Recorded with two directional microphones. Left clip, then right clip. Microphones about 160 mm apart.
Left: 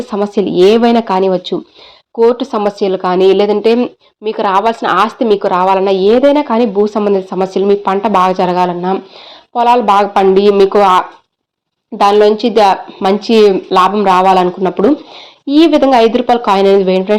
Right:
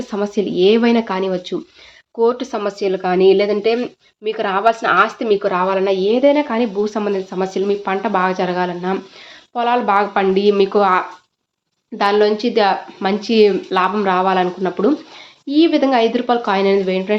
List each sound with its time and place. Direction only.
0.1 s speech: 35° left (ahead or behind)